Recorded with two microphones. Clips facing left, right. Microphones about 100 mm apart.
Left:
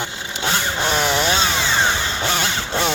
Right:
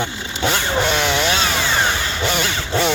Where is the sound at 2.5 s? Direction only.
20° left (ahead or behind).